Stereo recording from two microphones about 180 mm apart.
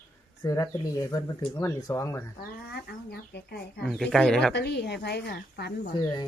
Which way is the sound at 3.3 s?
60° left (ahead or behind).